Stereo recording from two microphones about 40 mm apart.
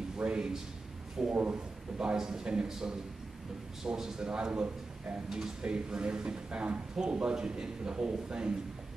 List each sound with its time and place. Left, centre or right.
0.2 s a man's voice: right
1.2 s a man's voice: centre
3.8 s a man's voice: centre